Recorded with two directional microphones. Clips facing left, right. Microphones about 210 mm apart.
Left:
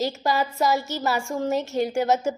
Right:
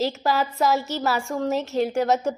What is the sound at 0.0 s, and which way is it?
A woman's voice, centre (ahead or behind).